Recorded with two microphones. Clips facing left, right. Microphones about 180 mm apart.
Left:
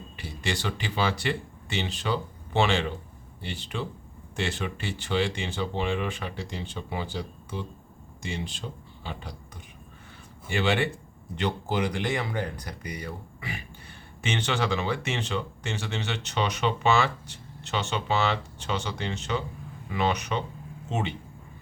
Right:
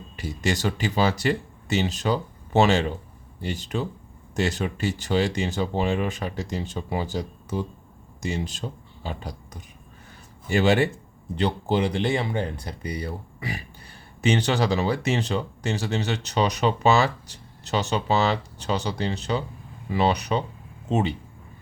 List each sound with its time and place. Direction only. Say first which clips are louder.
0.2 s speech: right 6 dB; 40° right (ahead or behind)